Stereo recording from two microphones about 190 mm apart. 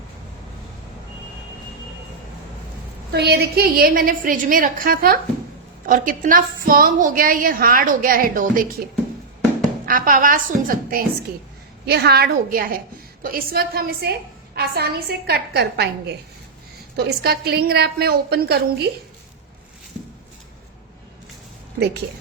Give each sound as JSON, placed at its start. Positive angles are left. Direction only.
{"t": 3.1, "sound": "a woman's voice", "side_deg": -60}
{"t": 9.8, "sound": "a woman's voice", "side_deg": -45}